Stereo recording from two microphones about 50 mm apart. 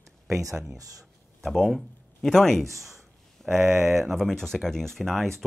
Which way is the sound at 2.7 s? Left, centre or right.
Centre.